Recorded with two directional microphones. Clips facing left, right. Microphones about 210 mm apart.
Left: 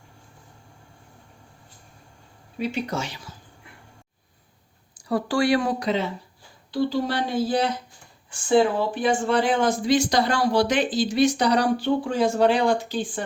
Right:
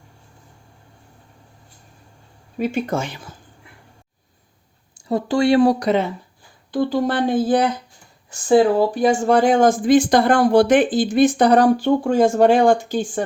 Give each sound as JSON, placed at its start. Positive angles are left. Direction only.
{"t": 2.6, "sound": "speech", "side_deg": -50}
{"t": 4.9, "sound": "speech", "side_deg": -25}
{"t": 5.8, "sound": "speech", "side_deg": -50}
{"t": 8.3, "sound": "speech", "side_deg": -40}